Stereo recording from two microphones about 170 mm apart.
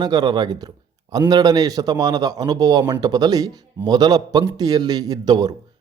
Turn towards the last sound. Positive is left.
turn(degrees=-25)  # may be behind; listen again after turning